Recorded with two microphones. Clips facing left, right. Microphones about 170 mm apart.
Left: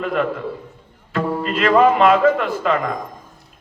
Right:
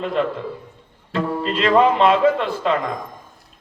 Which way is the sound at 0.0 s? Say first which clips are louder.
Left 1 dB; 25° right (ahead or behind).